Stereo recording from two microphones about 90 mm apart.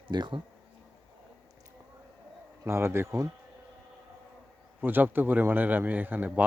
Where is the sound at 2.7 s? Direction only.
30° right (ahead or behind).